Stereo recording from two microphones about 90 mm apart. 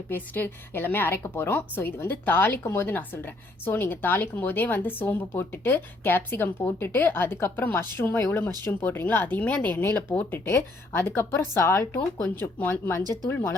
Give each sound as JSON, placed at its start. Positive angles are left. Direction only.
{"t": 0.1, "sound": "speech", "side_deg": 25}